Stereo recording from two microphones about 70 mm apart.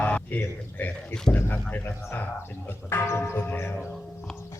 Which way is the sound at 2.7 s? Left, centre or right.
Left.